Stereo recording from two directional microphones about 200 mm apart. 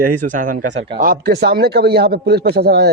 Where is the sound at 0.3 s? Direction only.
40° right (ahead or behind).